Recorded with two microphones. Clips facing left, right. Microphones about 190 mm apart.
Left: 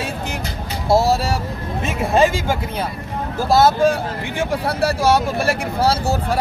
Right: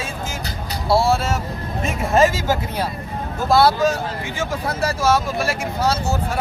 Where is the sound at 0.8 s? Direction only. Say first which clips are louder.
Left 2 dB; 40° left (ahead or behind).